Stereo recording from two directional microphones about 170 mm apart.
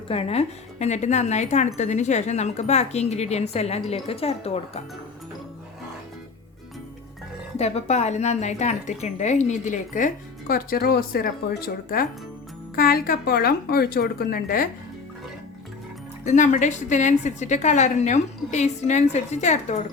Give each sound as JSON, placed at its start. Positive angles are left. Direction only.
{"t": 0.1, "sound": "speech", "side_deg": 35}
{"t": 7.6, "sound": "speech", "side_deg": 40}
{"t": 16.2, "sound": "speech", "side_deg": 45}